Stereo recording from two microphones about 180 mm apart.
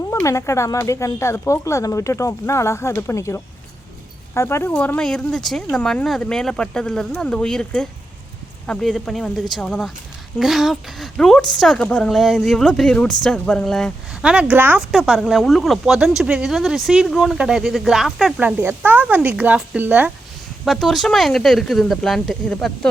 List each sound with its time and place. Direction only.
0.1 s a woman's voice: 15° left (ahead or behind)